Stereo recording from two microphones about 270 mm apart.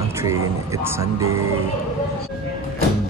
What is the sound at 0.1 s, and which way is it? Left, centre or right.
Speech, centre.